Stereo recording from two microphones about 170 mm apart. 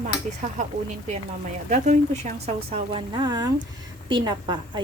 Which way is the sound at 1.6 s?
45° right (ahead or behind).